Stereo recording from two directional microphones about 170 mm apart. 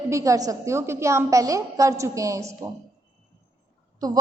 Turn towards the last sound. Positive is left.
turn(degrees=-20)  # may be behind; listen again after turning